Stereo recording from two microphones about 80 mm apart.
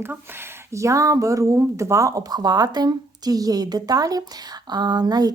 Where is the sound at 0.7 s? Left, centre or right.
Right.